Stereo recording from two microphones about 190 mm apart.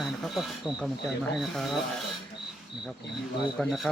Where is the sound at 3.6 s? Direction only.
Centre (ahead or behind).